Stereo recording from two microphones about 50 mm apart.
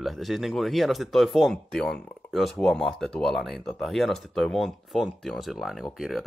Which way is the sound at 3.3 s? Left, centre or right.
Centre.